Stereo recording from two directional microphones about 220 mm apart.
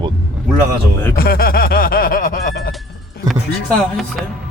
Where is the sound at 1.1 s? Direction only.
40° left (ahead or behind).